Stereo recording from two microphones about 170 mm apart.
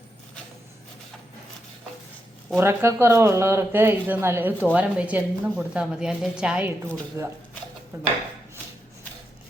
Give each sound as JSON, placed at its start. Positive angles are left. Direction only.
{"t": 2.6, "sound": "speech", "side_deg": -15}